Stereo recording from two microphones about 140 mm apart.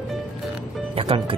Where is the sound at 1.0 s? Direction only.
40° right (ahead or behind).